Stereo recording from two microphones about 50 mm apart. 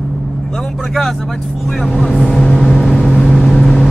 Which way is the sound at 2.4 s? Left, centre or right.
Centre.